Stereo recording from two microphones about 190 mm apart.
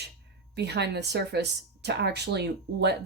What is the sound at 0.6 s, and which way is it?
Speech, 60° right (ahead or behind).